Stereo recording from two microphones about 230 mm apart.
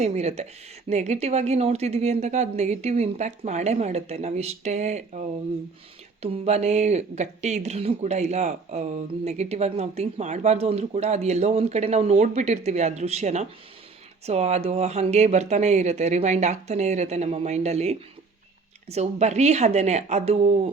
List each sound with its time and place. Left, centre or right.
0.0 s speech: right
6.3 s speech: right